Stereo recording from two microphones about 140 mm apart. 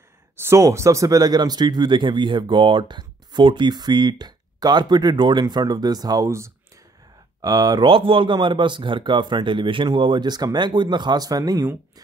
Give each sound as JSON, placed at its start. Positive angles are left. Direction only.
{"t": 0.4, "sound": "speech", "side_deg": -20}
{"t": 7.9, "sound": "speech", "side_deg": -40}